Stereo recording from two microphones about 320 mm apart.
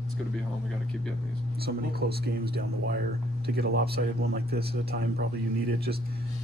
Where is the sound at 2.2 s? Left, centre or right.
Right.